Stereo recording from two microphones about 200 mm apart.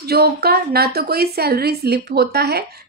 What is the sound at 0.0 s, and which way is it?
A woman's voice, 50° right (ahead or behind).